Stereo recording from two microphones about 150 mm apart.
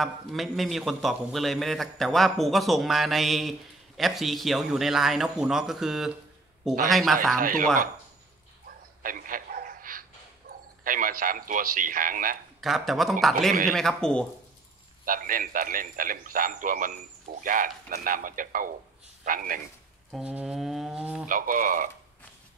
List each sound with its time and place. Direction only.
0.0 s a man's voice: centre (ahead or behind)
7.3 s speech: 65° right (ahead or behind)
9.0 s a sound: 65° right (ahead or behind)
10.8 s speech: 65° right (ahead or behind)
12.5 s a man's voice: centre (ahead or behind)
15.0 s speech: 65° right (ahead or behind)
20.1 s a man's voice: 5° right (ahead or behind)
21.3 s speech: 65° right (ahead or behind)